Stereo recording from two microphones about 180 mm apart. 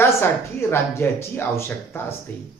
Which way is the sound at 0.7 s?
15° left (ahead or behind).